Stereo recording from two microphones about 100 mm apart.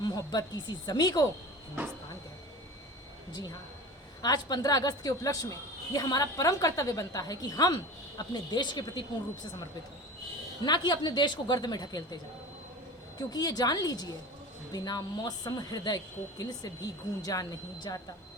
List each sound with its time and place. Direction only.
0.0 s a woman's voice: 40° left (ahead or behind)
4.2 s a woman's voice: 45° left (ahead or behind)
10.6 s a woman's voice: 45° left (ahead or behind)